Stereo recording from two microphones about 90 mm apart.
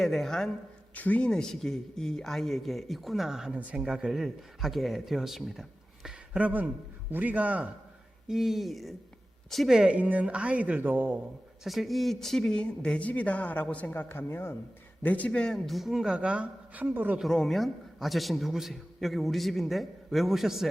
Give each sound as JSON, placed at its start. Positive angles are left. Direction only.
{"t": 0.0, "sound": "speech", "side_deg": 5}
{"t": 0.9, "sound": "a man's voice", "side_deg": 15}
{"t": 8.3, "sound": "a man's voice", "side_deg": -5}
{"t": 11.6, "sound": "speech", "side_deg": 0}
{"t": 17.2, "sound": "speech", "side_deg": 0}